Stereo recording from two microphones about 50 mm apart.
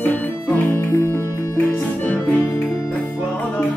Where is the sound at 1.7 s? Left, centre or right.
Left.